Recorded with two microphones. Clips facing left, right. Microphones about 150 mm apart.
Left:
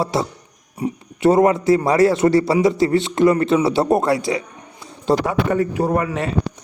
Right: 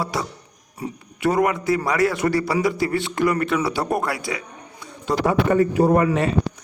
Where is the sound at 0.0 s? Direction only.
25° left (ahead or behind).